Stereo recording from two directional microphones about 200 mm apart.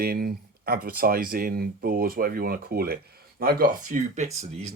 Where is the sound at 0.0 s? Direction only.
50° right (ahead or behind).